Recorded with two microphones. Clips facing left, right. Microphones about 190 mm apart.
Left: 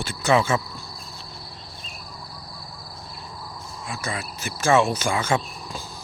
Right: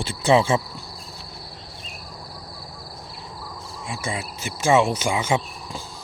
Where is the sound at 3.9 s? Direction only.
25° right (ahead or behind).